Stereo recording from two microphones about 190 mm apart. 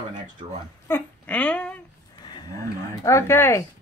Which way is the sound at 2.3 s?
20° left (ahead or behind).